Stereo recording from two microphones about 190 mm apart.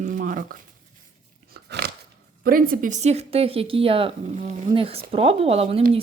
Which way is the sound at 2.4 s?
50° right (ahead or behind).